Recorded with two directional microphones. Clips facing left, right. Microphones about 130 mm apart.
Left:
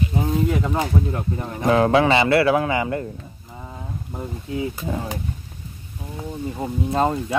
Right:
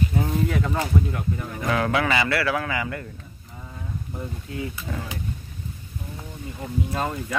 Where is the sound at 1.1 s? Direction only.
30° left (ahead or behind).